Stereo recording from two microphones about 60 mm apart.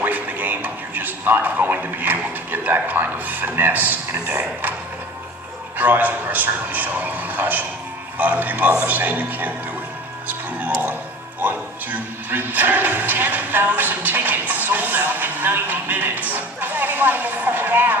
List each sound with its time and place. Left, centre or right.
0.0 s a sound: right
2.5 s a man's voice: right
5.7 s a man's voice: right
10.2 s music: right
11.3 s speech: right